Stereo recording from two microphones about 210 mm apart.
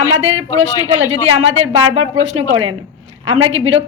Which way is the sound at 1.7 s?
25° right (ahead or behind).